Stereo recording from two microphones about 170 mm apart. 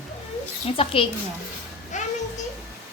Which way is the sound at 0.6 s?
35° left (ahead or behind).